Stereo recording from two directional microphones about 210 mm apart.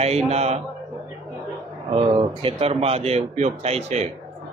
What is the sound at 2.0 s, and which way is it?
Speech, 25° right (ahead or behind).